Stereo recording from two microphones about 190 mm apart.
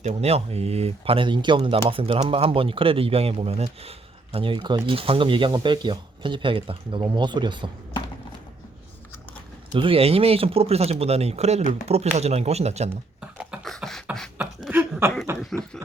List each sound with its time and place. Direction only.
0.0 s speech: 35° right (ahead or behind)
9.7 s speech: 30° right (ahead or behind)
13.4 s beatboxing: centre (ahead or behind)
15.4 s speech: 5° left (ahead or behind)